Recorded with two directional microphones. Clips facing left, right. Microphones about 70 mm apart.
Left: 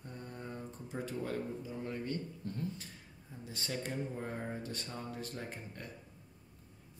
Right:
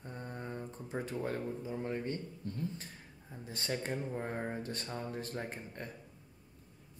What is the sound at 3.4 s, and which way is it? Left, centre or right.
Speech, right.